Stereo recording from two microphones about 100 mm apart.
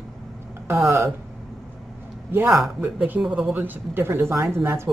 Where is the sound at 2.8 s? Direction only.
20° right (ahead or behind).